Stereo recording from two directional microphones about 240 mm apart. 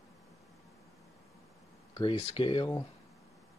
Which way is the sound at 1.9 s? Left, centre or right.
Centre.